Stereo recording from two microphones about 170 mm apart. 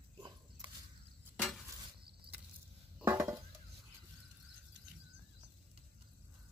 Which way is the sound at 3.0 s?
15° right (ahead or behind).